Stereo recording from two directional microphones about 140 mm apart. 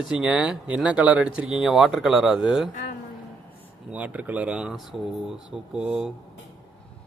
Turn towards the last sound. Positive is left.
turn(degrees=-5)  # may be behind; listen again after turning